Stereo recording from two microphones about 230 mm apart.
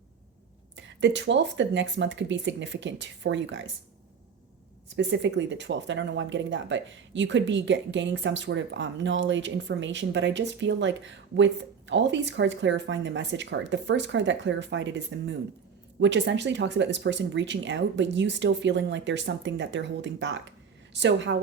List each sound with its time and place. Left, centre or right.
0.8 s speech: right
4.9 s speech: right